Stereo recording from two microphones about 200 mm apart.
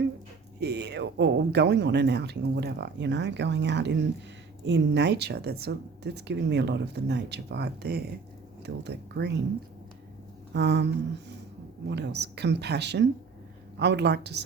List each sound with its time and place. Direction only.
0.6 s a woman's voice: 55° right (ahead or behind)
10.5 s a woman's voice: 60° right (ahead or behind)